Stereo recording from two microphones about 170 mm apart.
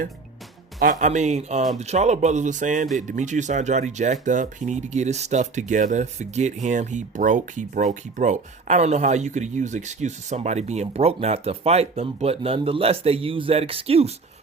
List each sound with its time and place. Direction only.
0.8 s speech: 50° right (ahead or behind)